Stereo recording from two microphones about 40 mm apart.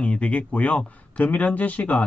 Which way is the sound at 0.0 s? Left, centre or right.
Left.